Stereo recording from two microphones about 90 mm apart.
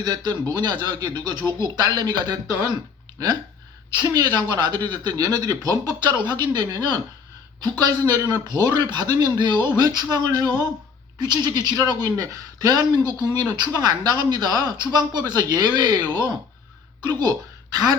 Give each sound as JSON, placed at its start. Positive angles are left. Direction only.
{"t": 0.0, "sound": "speech", "side_deg": -50}
{"t": 3.9, "sound": "speech", "side_deg": -50}
{"t": 13.0, "sound": "speech", "side_deg": 25}
{"t": 13.7, "sound": "speech", "side_deg": -45}